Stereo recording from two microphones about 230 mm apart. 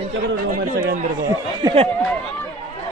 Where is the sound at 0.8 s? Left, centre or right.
Right.